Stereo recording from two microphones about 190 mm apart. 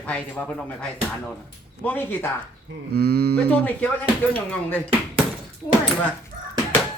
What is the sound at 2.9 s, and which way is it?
Speech, 55° right (ahead or behind).